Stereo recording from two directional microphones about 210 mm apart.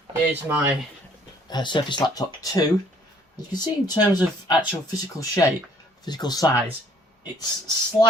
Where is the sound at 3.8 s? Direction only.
20° left (ahead or behind).